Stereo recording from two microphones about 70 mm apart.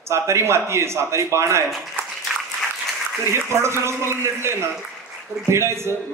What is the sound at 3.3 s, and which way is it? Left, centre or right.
A man's voice, right.